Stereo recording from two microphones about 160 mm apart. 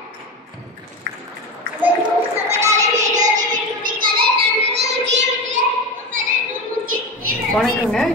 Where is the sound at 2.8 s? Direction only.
50° right (ahead or behind).